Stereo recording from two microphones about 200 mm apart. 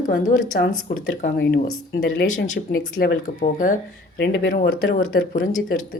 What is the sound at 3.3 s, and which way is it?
Speech, 40° left (ahead or behind).